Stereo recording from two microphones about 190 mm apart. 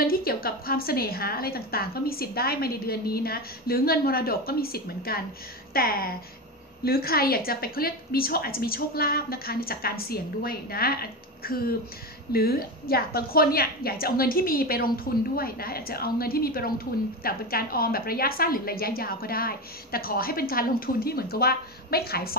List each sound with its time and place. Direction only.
0.0 s a woman's voice: 55° left (ahead or behind)